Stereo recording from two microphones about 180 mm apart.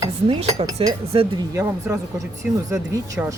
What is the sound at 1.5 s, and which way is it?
Speech, 15° right (ahead or behind).